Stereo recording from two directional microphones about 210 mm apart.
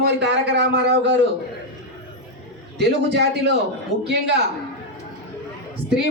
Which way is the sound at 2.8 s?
55° right (ahead or behind).